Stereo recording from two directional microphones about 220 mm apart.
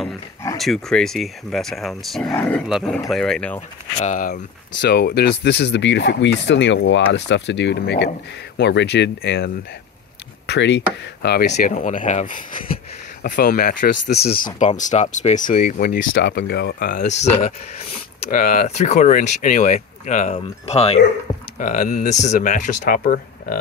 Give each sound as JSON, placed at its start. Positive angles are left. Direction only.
{"t": 0.6, "sound": "speech", "side_deg": 0}
{"t": 4.0, "sound": "speech", "side_deg": 35}
{"t": 4.8, "sound": "speech", "side_deg": 45}
{"t": 11.5, "sound": "speech", "side_deg": 35}
{"t": 17.2, "sound": "speech", "side_deg": 30}